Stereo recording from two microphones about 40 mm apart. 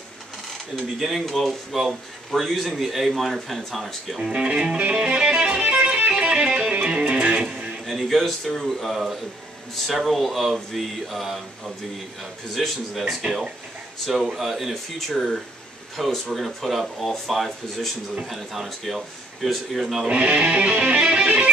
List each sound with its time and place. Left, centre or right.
0.9 s a man's voice: centre
4.2 s music: right
5.6 s music: right
7.3 s music: centre
7.8 s a man's voice: centre
8.9 s music: centre
9.9 s a man's voice: centre
13.2 s music: centre
14.0 s a man's voice: centre
20.1 s music: right